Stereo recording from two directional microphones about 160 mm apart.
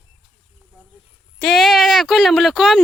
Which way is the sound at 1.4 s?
Centre (ahead or behind).